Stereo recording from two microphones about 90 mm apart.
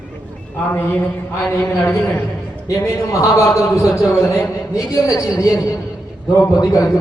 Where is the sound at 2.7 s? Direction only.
35° left (ahead or behind).